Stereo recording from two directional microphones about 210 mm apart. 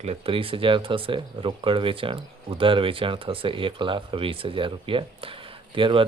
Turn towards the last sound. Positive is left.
turn(degrees=-25)  # may be behind; listen again after turning